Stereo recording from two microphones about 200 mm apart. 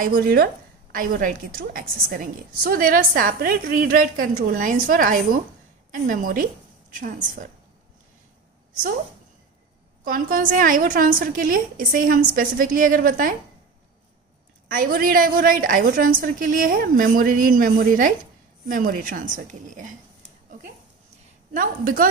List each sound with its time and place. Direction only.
0.0 s a woman's voice: 45° right (ahead or behind)
10.0 s a woman's voice: 45° right (ahead or behind)
14.7 s a woman's voice: 45° right (ahead or behind)
21.5 s a woman's voice: 45° right (ahead or behind)